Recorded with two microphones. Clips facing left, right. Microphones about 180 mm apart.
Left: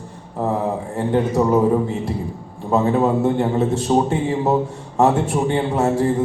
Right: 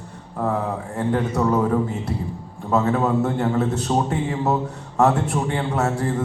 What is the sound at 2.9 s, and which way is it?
A man's voice, 20° left (ahead or behind).